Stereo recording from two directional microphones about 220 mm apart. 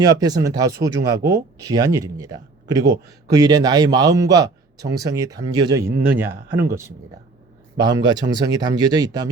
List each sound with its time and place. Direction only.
0.0 s speech: 15° right (ahead or behind)